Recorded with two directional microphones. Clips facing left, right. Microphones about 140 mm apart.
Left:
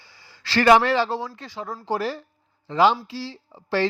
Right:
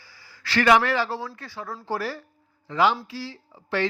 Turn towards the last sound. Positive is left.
turn(degrees=30)  # may be behind; listen again after turning